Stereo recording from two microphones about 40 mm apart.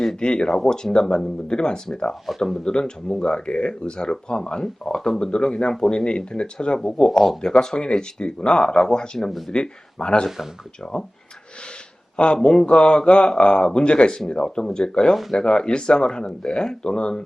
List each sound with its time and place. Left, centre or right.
0.2 s speech: left
6.9 s speech: centre
10.2 s speech: centre
12.1 s speech: left